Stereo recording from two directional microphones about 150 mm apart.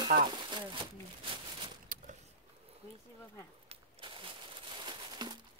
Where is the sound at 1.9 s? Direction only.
65° right (ahead or behind).